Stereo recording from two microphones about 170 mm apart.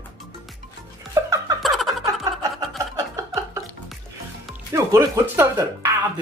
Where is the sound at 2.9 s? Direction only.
20° right (ahead or behind).